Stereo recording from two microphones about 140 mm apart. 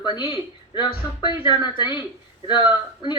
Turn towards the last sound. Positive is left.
turn(degrees=35)  # may be behind; listen again after turning